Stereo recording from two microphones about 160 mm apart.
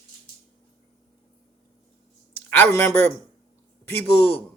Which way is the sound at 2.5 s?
15° left (ahead or behind).